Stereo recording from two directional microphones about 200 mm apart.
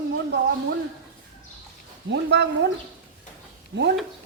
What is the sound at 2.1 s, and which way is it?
Speech, 60° right (ahead or behind).